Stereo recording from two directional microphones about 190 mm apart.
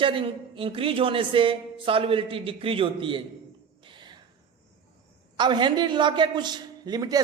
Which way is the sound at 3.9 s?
25° right (ahead or behind).